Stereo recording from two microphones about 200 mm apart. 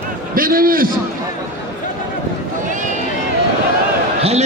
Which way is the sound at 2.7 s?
40° right (ahead or behind).